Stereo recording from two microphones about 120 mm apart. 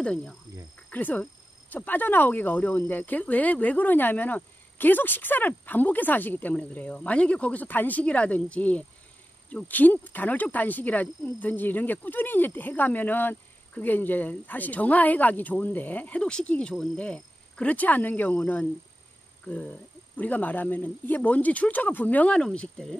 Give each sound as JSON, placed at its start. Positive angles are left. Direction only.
{"t": 0.0, "sound": "speech", "side_deg": 5}